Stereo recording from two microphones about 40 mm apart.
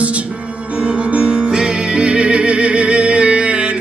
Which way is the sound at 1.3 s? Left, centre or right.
Centre.